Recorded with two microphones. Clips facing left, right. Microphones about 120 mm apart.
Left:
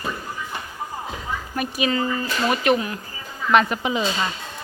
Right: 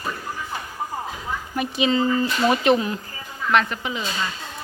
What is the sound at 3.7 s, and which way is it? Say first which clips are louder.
Speech: left 5 dB; 20° left (ahead or behind).